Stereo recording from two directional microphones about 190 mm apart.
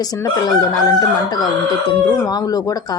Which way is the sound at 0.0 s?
20° left (ahead or behind).